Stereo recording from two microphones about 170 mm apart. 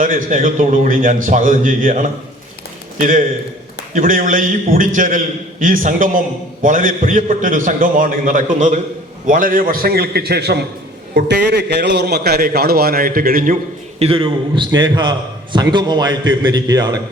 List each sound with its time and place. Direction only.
0.0 s a man's voice: 55° right (ahead or behind); by 10.6 s 70° right (ahead or behind)
11.1 s a man's voice: 80° right; by 13.6 s 55° right (ahead or behind)
14.0 s a man's voice: 35° right (ahead or behind)